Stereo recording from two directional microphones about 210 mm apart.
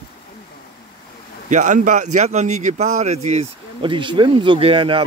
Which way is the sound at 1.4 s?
35° right (ahead or behind).